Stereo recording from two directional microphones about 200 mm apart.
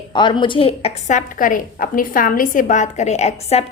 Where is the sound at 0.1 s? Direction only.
25° left (ahead or behind).